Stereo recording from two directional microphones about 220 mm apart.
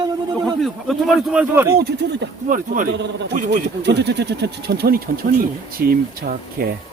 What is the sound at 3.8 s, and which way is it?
Speech, 50° right (ahead or behind).